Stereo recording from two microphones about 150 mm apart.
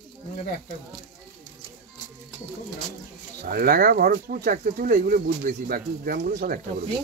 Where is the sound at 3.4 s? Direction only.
90° right.